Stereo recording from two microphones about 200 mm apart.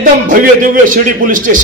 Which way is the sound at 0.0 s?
45° right (ahead or behind).